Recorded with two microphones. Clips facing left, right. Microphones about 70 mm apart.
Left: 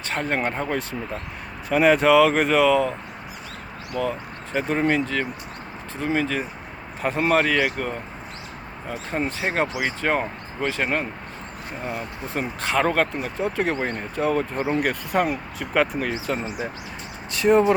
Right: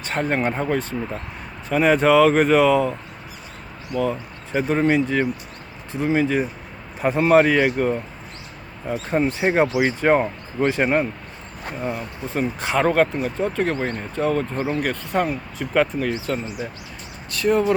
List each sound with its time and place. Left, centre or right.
0.1 s speech: centre
3.9 s speech: centre
17.3 s speech: left